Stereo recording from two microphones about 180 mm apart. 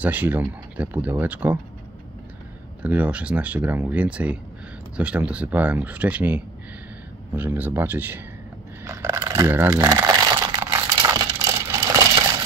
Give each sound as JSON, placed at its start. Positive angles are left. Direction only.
{"t": 0.0, "sound": "speech", "side_deg": -10}
{"t": 2.8, "sound": "speech", "side_deg": -10}
{"t": 8.8, "sound": "crumpling", "side_deg": -15}